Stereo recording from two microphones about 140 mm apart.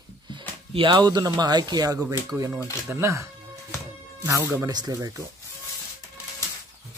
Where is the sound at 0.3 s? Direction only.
35° right (ahead or behind); by 3.3 s 20° right (ahead or behind).